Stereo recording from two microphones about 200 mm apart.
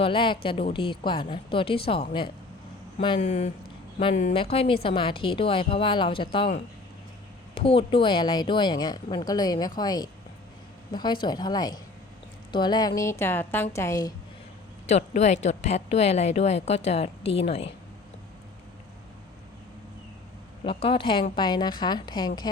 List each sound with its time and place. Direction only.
0.0 s a woman's voice: 25° left (ahead or behind)
4.5 s a woman's voice: 30° left (ahead or behind)
7.5 s a woman's voice: 30° left (ahead or behind)
14.8 s a woman's voice: 35° left (ahead or behind)
20.7 s a woman's voice: 25° left (ahead or behind)